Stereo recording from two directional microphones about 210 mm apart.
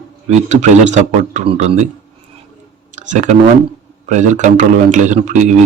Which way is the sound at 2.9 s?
35° right (ahead or behind).